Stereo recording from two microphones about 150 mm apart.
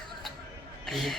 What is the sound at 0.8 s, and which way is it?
Speech, centre (ahead or behind).